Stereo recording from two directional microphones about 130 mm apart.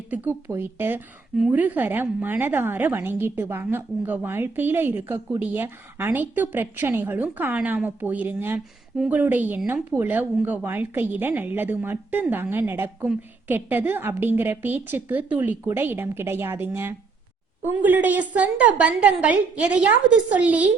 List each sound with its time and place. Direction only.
0.1 s a woman's voice: 15° right (ahead or behind)